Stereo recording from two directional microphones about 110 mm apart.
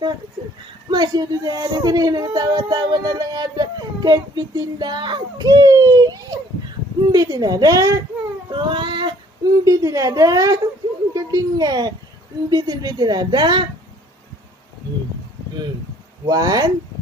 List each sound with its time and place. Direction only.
0.9 s speech: 40° right (ahead or behind)
8.4 s a sound: 45° right (ahead or behind)
9.5 s speech: 30° right (ahead or behind)
16.2 s speech: 35° right (ahead or behind)